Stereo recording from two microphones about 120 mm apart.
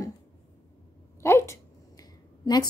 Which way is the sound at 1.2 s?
25° left (ahead or behind).